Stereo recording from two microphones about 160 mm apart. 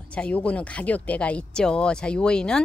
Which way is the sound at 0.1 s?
5° left (ahead or behind).